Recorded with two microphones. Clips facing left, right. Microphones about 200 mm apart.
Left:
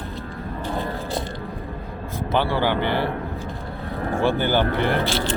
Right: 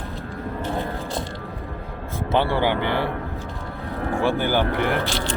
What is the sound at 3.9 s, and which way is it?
Cattle, 35° left (ahead or behind).